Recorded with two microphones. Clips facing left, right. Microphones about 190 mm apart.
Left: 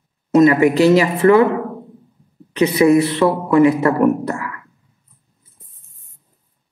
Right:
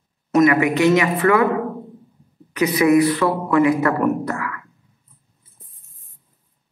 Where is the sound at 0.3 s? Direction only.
30° left (ahead or behind).